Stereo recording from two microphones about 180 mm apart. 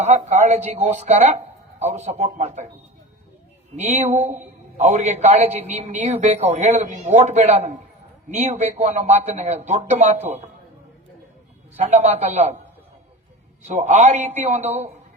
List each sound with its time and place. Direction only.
0.0 s a man's voice: 40° right (ahead or behind)
3.8 s a man's voice: 40° right (ahead or behind)
11.8 s a man's voice: 40° right (ahead or behind)
13.7 s a man's voice: 40° right (ahead or behind)